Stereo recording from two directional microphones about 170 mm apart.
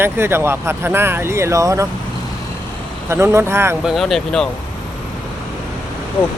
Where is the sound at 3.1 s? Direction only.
15° right (ahead or behind).